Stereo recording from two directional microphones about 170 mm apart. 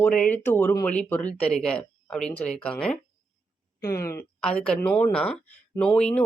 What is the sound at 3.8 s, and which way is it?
Speech, 15° left (ahead or behind).